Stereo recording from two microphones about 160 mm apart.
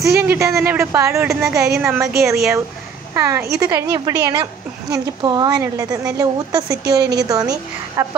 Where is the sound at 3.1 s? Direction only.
15° right (ahead or behind).